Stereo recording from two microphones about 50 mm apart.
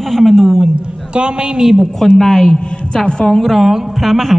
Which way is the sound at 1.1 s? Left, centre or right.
Centre.